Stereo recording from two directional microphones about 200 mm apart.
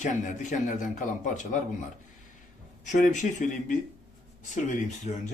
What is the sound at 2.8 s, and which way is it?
Speech, 40° left (ahead or behind).